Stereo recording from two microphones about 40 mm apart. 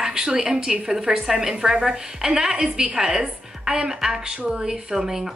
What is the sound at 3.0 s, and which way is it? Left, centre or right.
A woman's voice, centre.